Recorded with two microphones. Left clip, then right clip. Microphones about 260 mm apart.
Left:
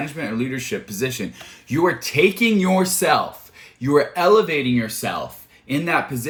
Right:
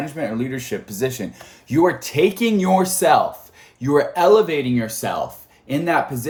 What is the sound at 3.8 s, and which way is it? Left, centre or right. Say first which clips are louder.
Speech: right 1 dB; right.